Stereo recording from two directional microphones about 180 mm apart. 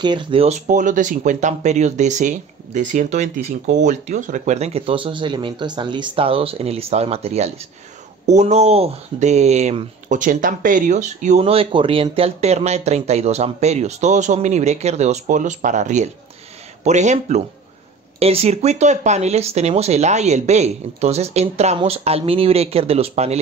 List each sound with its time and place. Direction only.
0.0 s speech: 25° right (ahead or behind)